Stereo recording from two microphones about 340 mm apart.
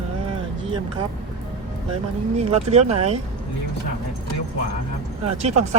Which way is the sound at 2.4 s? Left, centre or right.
Centre.